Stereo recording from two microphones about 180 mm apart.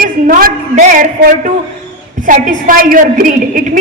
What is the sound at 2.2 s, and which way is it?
A woman's voice, 45° right (ahead or behind).